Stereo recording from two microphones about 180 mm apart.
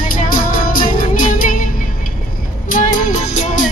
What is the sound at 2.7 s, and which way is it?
Music, 45° left (ahead or behind).